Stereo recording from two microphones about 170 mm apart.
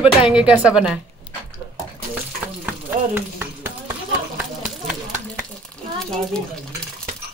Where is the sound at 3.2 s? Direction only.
10° right (ahead or behind).